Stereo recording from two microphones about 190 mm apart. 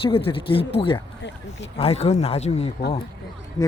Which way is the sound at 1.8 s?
35° left (ahead or behind).